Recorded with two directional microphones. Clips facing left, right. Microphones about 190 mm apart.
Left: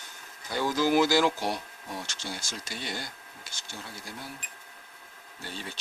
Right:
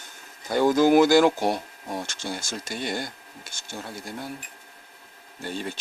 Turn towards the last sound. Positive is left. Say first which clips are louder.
# right 8 dB
turn(degrees=-50)  # may be behind; listen again after turning